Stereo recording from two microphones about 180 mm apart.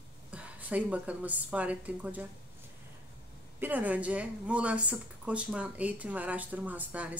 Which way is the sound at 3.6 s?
10° right (ahead or behind).